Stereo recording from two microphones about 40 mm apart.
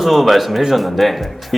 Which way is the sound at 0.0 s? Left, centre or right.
Centre.